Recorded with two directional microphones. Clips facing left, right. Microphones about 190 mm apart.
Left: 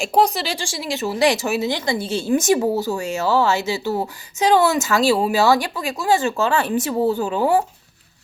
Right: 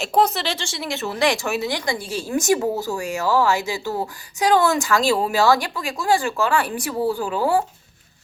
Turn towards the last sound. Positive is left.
turn(degrees=20)  # may be behind; listen again after turning